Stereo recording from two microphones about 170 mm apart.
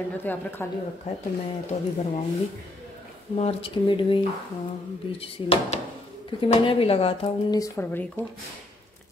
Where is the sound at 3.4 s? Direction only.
35° left (ahead or behind).